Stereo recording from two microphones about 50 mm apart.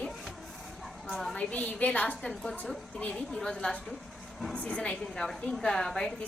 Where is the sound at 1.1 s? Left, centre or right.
Centre.